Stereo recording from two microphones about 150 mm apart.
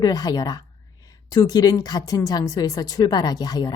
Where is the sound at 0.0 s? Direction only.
25° left (ahead or behind).